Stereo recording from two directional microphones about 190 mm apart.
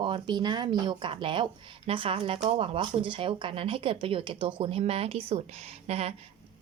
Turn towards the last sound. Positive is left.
turn(degrees=-30)  # may be behind; listen again after turning